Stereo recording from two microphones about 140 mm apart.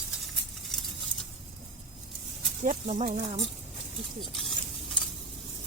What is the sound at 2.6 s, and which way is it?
Speech, 60° right (ahead or behind).